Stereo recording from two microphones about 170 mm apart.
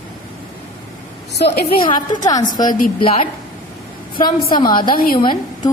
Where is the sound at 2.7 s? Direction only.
55° left (ahead or behind).